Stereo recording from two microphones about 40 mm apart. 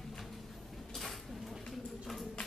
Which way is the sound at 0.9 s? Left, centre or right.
Centre.